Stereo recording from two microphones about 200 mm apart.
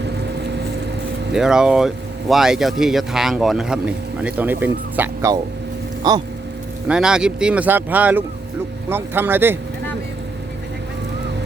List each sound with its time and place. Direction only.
1.3 s speech: 5° right (ahead or behind); by 6.2 s 20° right (ahead or behind)
6.8 s speech: 5° right (ahead or behind)